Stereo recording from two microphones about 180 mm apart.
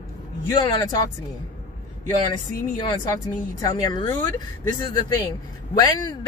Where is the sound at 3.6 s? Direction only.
25° left (ahead or behind).